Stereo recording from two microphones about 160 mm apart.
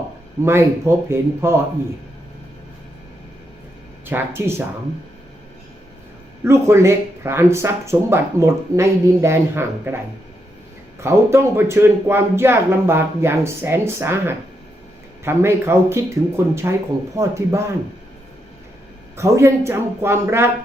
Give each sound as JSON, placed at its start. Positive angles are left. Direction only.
{"t": 0.4, "sound": "speech", "side_deg": -15}
{"t": 4.1, "sound": "speech", "side_deg": -15}
{"t": 6.4, "sound": "speech", "side_deg": -15}
{"t": 11.0, "sound": "speech", "side_deg": -15}
{"t": 19.1, "sound": "speech", "side_deg": -15}